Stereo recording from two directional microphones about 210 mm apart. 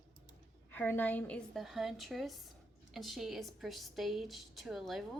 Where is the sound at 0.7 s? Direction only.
10° left (ahead or behind).